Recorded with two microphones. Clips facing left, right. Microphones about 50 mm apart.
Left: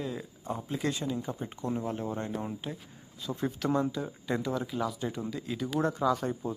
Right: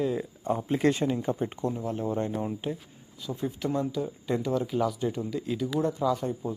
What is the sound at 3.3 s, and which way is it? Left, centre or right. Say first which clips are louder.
Speech: even; left.